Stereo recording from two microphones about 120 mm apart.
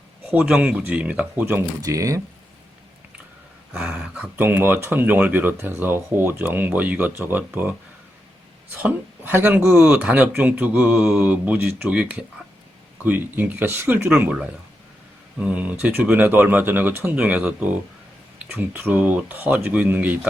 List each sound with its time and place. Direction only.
0.3 s speech: 5° right (ahead or behind); by 2.2 s 25° right (ahead or behind)
3.7 s speech: 10° right (ahead or behind)